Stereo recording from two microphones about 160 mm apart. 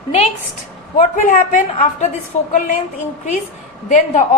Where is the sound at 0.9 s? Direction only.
60° left (ahead or behind).